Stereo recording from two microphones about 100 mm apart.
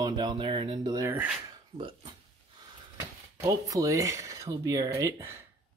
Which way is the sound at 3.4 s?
35° right (ahead or behind).